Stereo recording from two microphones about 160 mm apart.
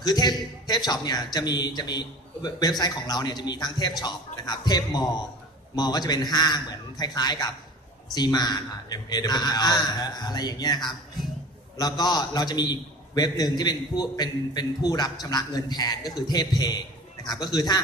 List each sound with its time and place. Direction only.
0.0 s a man's voice: 25° left (ahead or behind)